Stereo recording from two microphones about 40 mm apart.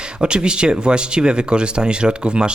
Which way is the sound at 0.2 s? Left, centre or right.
Right.